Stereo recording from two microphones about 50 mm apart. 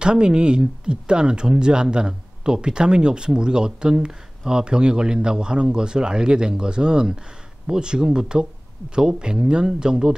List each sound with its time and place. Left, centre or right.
0.0 s speech: centre